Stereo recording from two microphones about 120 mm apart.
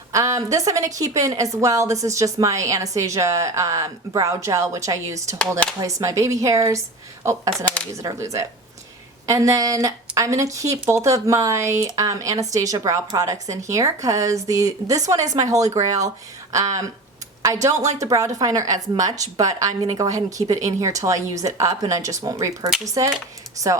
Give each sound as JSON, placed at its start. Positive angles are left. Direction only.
{"t": 0.1, "sound": "a woman's voice", "side_deg": -25}
{"t": 7.5, "sound": "shuffling cards", "side_deg": 5}
{"t": 7.9, "sound": "a woman's voice", "side_deg": -25}